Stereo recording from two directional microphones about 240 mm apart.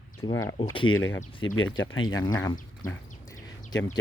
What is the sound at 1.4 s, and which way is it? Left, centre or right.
Speech, left.